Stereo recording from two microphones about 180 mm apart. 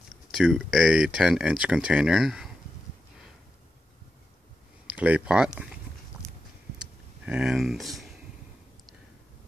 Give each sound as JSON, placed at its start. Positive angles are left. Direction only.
{"t": 0.3, "sound": "speech", "side_deg": 0}
{"t": 4.8, "sound": "speech", "side_deg": -10}
{"t": 7.2, "sound": "speech", "side_deg": -5}